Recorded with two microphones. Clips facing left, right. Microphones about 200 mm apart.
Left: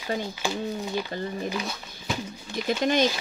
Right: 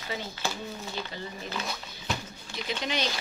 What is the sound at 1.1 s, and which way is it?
Speech, 55° left (ahead or behind).